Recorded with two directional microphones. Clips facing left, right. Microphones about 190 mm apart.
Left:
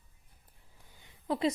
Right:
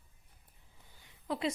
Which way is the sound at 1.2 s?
35° left (ahead or behind).